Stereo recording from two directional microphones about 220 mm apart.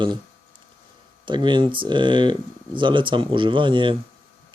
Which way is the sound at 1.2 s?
20° right (ahead or behind).